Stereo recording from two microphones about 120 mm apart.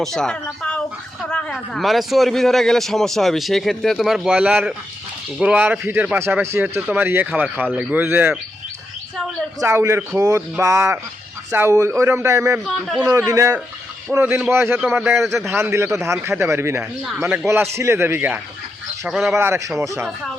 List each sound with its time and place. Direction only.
0.0 s a man's voice: 5° left (ahead or behind); by 8.4 s 15° right (ahead or behind)
9.6 s speech: 25° right (ahead or behind)
12.6 s a man's voice: centre (ahead or behind)
13.0 s speech: 20° right (ahead or behind)
13.2 s speech: 30° right (ahead or behind)
19.0 s a man's voice: centre (ahead or behind)
19.4 s speech: 20° right (ahead or behind)